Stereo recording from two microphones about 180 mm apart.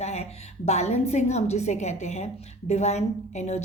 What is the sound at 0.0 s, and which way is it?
A woman's voice, 35° left (ahead or behind).